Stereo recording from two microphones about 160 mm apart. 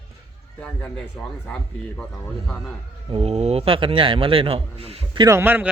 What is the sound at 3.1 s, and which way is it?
A man's voice, 40° right (ahead or behind).